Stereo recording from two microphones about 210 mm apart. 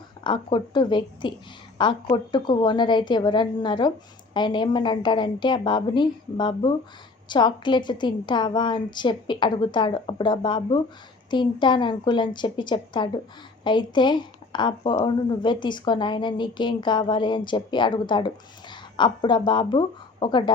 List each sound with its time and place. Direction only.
0.3 s a woman's voice: 20° left (ahead or behind)